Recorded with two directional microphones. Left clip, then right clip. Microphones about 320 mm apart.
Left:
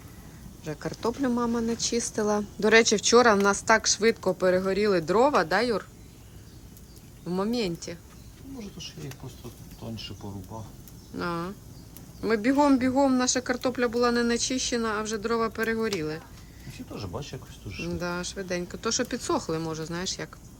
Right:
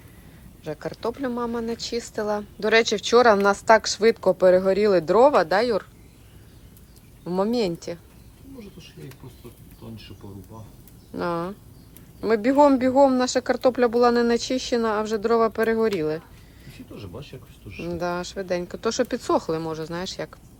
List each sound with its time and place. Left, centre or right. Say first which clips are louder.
0.6 s a man's voice: right 2 dB; centre
7.3 s a man's voice: right 5 dB; centre
11.1 s a man's voice: right 5 dB; centre
17.8 s a man's voice: right 5 dB; centre